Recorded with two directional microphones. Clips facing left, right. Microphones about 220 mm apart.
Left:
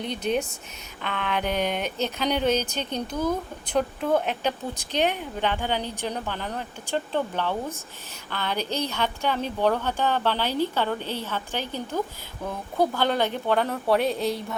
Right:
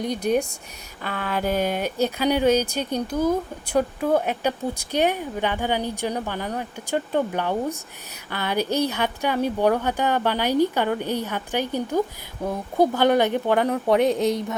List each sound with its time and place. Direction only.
0.0 s a woman's voice: 10° right (ahead or behind)
1.1 s a sound: 40° right (ahead or behind)
1.5 s a woman's voice: 5° right (ahead or behind)